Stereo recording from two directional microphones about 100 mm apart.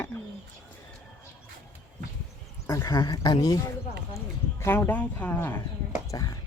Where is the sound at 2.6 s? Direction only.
35° left (ahead or behind).